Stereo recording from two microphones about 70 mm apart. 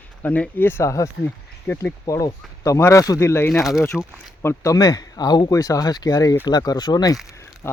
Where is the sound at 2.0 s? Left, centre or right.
Left.